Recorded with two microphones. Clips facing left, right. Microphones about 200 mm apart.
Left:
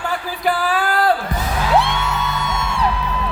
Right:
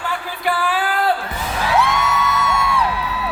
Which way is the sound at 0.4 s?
40° left (ahead or behind).